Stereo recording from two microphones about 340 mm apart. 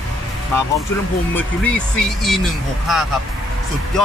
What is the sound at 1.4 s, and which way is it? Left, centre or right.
Speech, centre.